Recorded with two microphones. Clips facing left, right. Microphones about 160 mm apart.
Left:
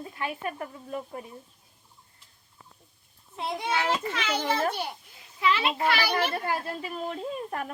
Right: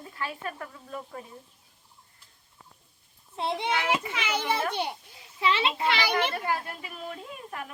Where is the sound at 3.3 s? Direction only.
30° right (ahead or behind).